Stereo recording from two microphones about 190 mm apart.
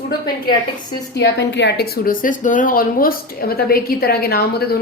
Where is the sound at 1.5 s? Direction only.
65° left (ahead or behind).